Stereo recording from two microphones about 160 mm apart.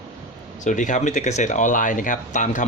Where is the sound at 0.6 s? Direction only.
50° left (ahead or behind).